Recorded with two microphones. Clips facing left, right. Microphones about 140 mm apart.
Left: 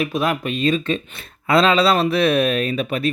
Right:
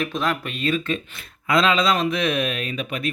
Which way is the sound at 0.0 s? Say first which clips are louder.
Left 4 dB; 10° left (ahead or behind).